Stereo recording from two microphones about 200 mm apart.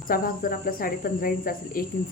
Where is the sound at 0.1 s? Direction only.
45° left (ahead or behind).